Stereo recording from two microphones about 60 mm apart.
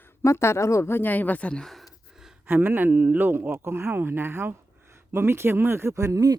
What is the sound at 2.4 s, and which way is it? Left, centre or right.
A man's voice, right.